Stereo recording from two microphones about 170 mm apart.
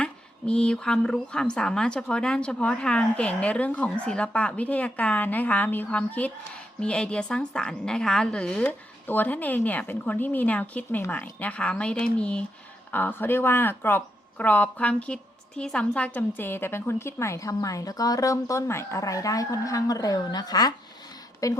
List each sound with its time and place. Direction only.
0.0 s a woman's voice: 5° left (ahead or behind)